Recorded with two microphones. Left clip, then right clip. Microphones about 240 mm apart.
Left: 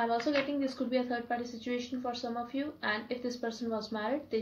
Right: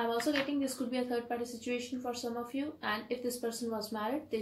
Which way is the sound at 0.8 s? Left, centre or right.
Left.